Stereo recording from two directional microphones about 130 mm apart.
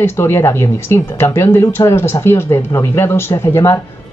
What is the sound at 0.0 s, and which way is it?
Speech, 20° left (ahead or behind).